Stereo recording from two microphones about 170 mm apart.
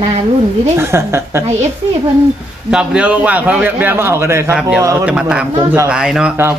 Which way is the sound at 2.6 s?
5° right (ahead or behind).